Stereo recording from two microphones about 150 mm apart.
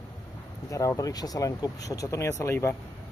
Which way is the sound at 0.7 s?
20° left (ahead or behind).